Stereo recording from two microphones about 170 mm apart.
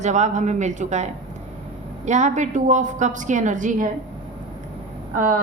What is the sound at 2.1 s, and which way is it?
A woman's voice, 45° right (ahead or behind).